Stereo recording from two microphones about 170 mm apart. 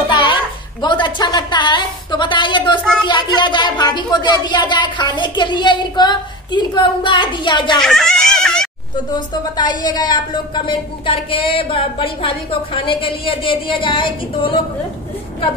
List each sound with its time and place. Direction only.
0.1 s a woman's voice: 30° left (ahead or behind)
7.8 s a child's voice: 5° left (ahead or behind)
9.1 s speech: 25° left (ahead or behind)